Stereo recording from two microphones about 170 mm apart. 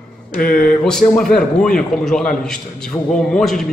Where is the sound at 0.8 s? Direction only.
5° left (ahead or behind).